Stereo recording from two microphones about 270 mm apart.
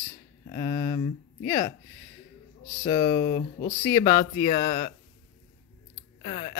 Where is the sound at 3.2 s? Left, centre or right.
Left.